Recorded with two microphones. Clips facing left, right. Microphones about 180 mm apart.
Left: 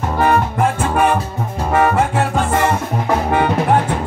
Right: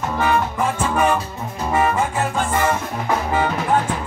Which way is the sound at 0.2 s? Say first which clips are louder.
Left 5 dB; 60° left (ahead or behind).